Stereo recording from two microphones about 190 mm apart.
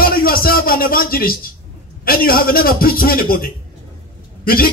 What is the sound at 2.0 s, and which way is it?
A man's voice, 50° left (ahead or behind).